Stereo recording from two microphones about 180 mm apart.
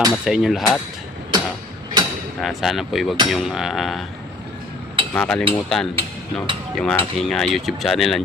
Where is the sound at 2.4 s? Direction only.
Centre (ahead or behind).